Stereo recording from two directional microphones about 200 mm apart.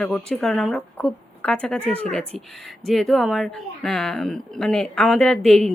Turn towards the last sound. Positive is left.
turn(degrees=5)  # may be behind; listen again after turning